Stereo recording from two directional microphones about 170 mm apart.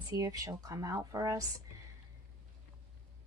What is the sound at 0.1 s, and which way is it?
Speech, 20° right (ahead or behind).